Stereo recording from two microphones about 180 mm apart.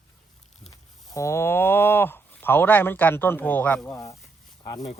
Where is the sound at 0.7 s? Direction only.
15° left (ahead or behind).